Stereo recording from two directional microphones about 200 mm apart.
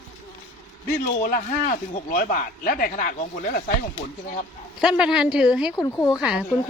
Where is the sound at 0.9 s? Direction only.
50° left (ahead or behind).